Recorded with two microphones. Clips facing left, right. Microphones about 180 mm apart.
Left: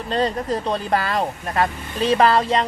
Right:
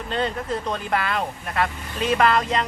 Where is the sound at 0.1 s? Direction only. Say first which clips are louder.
Left 4 dB; 35° left (ahead or behind).